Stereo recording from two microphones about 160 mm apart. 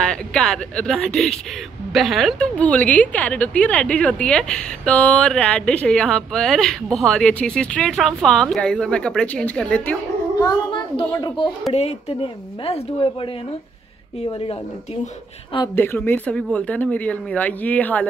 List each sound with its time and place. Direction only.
0.0 s a woman's voice: 5° left (ahead or behind)
10.4 s a child's voice: 25° left (ahead or behind)
11.7 s speech: 40° left (ahead or behind)
15.7 s speech: 15° left (ahead or behind)